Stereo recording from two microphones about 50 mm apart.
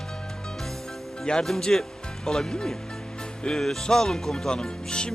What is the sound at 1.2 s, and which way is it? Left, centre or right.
Speech, centre.